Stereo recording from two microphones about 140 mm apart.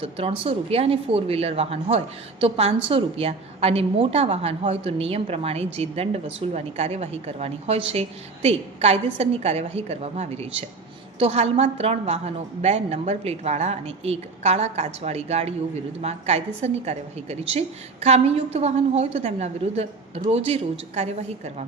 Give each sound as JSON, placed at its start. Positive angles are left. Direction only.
{"t": 0.0, "sound": "a woman's voice", "side_deg": -45}